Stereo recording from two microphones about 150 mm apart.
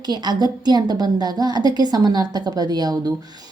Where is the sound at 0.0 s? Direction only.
30° right (ahead or behind).